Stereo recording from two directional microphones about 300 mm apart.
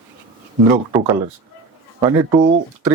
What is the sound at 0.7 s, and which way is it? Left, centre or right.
Speech, centre.